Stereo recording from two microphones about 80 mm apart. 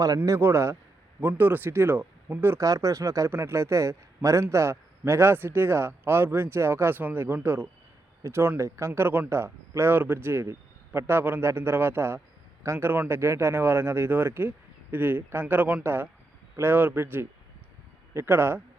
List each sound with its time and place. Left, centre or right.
0.3 s speech: right
2.6 s speech: right